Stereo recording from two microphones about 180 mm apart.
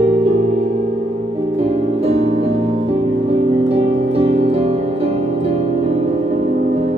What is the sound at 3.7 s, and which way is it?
Music, 35° right (ahead or behind).